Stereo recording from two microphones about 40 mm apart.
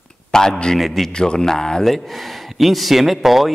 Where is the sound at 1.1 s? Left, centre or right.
Centre.